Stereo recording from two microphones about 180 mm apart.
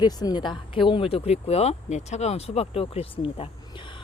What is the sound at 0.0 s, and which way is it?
A woman's voice, 20° left (ahead or behind).